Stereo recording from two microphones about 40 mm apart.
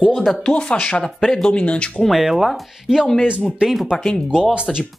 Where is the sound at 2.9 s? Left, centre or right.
Centre.